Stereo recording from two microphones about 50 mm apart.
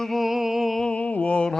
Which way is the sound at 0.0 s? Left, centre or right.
Centre.